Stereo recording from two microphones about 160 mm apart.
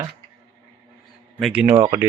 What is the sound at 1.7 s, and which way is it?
Speech, 25° right (ahead or behind).